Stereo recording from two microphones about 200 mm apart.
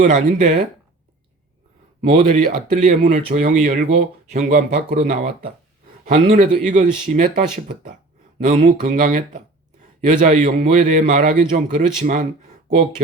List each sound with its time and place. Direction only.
0.0 s a man's voice: 35° right (ahead or behind)
2.0 s a man's voice: 35° right (ahead or behind)
6.1 s a man's voice: 35° right (ahead or behind)